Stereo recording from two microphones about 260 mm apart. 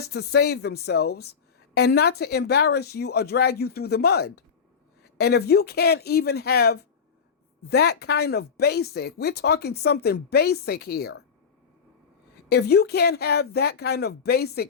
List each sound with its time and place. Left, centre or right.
0.1 s a woman's voice: left
12.5 s a woman's voice: left